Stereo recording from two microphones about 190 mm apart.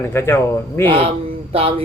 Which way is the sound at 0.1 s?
15° left (ahead or behind).